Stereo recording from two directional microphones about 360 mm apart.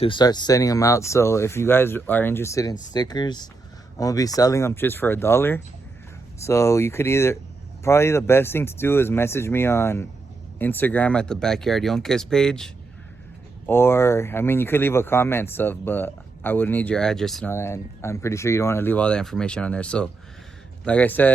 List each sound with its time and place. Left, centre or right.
0.0 s speech: centre